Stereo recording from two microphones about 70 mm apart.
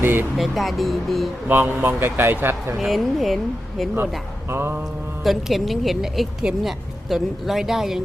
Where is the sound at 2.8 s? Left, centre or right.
Centre.